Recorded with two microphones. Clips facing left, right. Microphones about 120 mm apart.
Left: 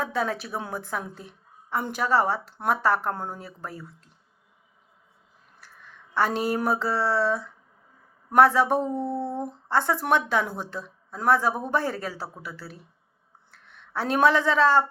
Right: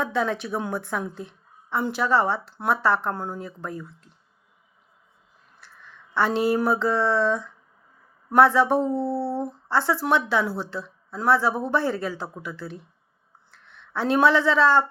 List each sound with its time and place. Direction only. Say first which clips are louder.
0.0 s speech: right 2 dB; 40° left (ahead or behind)
5.6 s a sound: right 1 dB; 45° left (ahead or behind)
6.1 s speech: right 3 dB; 40° left (ahead or behind)
8.8 s a sound: right 3 dB; 35° right (ahead or behind)
9.1 s humming: right 3 dB; 15° left (ahead or behind)
9.6 s speech: even; 50° left (ahead or behind)